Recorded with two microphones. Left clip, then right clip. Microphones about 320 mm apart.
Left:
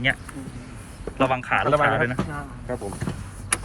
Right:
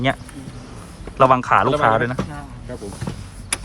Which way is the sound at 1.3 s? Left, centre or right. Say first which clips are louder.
Right 4 dB; right.